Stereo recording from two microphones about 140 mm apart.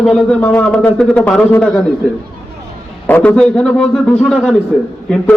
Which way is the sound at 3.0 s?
10° left (ahead or behind).